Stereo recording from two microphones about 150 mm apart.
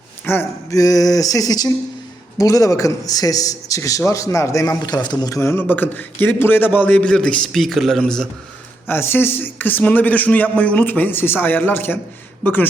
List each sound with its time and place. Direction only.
0.3 s a man's voice: 20° left (ahead or behind)
8.9 s a man's voice: 15° left (ahead or behind)